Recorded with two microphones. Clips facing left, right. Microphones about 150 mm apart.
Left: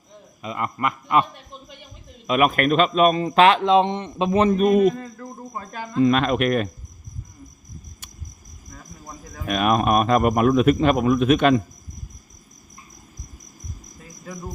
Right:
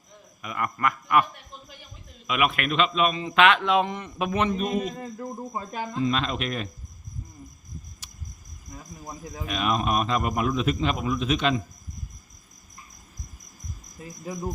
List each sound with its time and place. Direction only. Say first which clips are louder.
0.4 s a man's voice: left 2 dB; 25° left (ahead or behind)
2.2 s a man's voice: left 7 dB; 40° left (ahead or behind)
4.4 s a man's voice: left 10 dB; 55° left (ahead or behind)
4.9 s speech: right 1 dB; 20° right (ahead or behind)
6.0 s a man's voice: left 9 dB; 60° left (ahead or behind)
9.5 s a man's voice: left 6 dB; 55° left (ahead or behind)